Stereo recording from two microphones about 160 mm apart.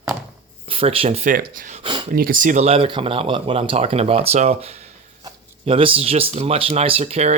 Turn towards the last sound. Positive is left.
turn(degrees=-45)  # may be behind; listen again after turning